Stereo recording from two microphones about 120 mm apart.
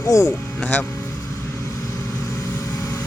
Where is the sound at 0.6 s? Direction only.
15° left (ahead or behind).